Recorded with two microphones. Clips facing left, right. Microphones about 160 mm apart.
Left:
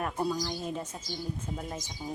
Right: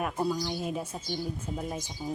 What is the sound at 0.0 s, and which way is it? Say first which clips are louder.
Speech: right 1 dB; 5° right (ahead or behind).